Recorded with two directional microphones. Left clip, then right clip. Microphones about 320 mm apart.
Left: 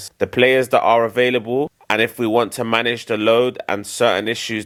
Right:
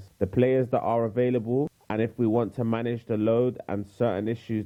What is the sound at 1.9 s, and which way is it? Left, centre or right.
Speech, centre.